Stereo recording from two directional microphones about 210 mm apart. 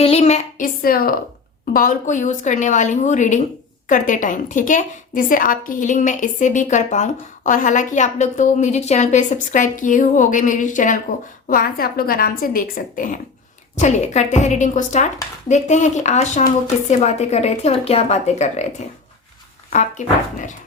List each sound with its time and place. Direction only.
0.0 s a woman's voice: 30° left (ahead or behind)
19.7 s a woman's voice: 35° left (ahead or behind)